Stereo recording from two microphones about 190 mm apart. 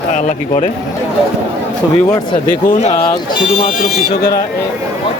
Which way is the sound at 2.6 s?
45° left (ahead or behind).